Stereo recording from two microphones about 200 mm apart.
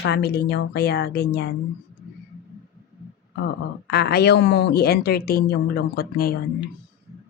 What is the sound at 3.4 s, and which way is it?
Speech, 55° left (ahead or behind).